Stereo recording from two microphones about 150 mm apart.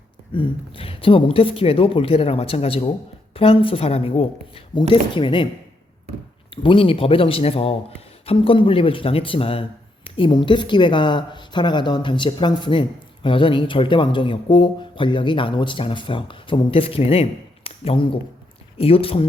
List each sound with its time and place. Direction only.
0.3 s a man's voice: 35° left (ahead or behind)
6.5 s a man's voice: 35° left (ahead or behind)